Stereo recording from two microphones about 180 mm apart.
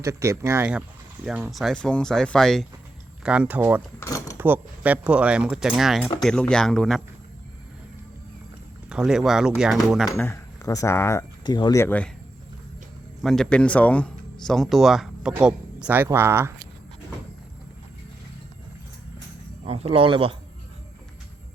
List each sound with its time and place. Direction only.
0.0 s speech: 15° right (ahead or behind)
4.0 s speech: 20° left (ahead or behind)
4.4 s speech: 10° right (ahead or behind)
8.9 s speech: 5° right (ahead or behind)
10.2 s speech: 15° left (ahead or behind)
13.2 s speech: 5° left (ahead or behind); by 16.5 s 15° right (ahead or behind)
19.6 s speech: 35° right (ahead or behind)